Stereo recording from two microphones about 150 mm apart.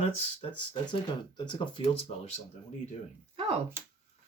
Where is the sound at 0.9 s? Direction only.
30° left (ahead or behind).